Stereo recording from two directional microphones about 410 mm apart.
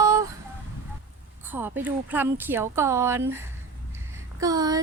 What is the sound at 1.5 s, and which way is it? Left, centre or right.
A woman's voice, centre.